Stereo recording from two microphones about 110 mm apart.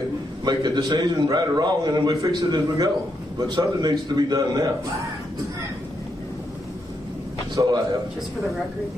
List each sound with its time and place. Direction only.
0.5 s a man's voice: 40° right (ahead or behind)
7.6 s a man's voice: 35° right (ahead or behind)